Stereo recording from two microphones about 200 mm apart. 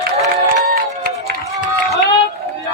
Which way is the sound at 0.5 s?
55° right (ahead or behind).